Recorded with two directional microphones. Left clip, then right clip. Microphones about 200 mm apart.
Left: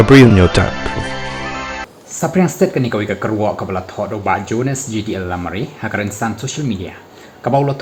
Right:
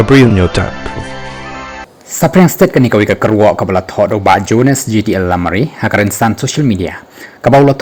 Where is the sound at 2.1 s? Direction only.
45° right (ahead or behind).